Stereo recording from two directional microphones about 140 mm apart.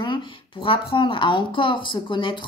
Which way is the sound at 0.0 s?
35° left (ahead or behind).